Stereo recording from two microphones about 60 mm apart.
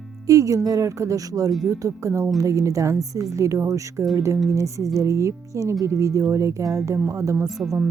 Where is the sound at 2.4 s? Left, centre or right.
Right.